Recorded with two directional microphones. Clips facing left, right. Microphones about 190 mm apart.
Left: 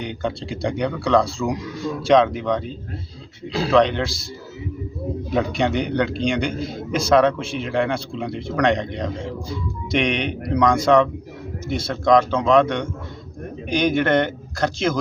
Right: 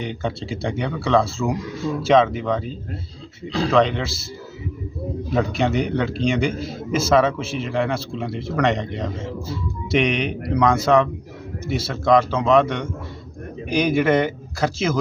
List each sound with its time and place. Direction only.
0.0 s a man's voice: centre (ahead or behind)
5.3 s a man's voice: centre (ahead or behind)